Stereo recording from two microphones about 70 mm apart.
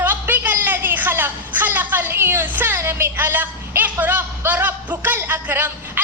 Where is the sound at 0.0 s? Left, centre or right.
Right.